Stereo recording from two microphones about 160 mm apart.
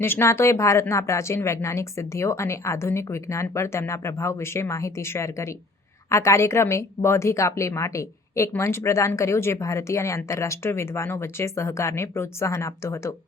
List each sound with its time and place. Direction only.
0.0 s a woman's voice: 15° left (ahead or behind)